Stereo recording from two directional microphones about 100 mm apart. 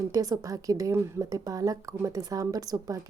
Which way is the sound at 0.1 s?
35° right (ahead or behind).